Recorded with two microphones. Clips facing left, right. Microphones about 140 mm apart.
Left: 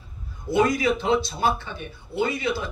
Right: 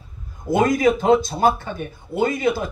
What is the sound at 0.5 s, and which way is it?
A man's voice, 45° right (ahead or behind).